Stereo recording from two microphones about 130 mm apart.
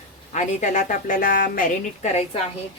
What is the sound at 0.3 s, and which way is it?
A woman's voice, 70° left (ahead or behind).